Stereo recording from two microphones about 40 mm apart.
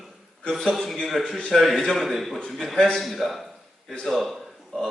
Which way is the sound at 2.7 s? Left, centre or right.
Centre.